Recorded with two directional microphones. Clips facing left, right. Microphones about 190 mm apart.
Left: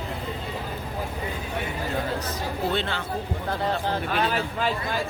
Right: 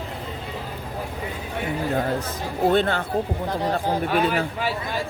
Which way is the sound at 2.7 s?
50° right (ahead or behind).